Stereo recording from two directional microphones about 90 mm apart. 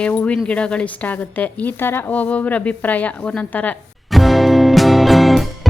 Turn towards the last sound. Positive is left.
turn(degrees=0)  # may be behind; listen again after turning